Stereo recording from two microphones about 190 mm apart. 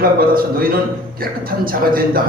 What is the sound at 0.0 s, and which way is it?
A man's voice, 50° right (ahead or behind).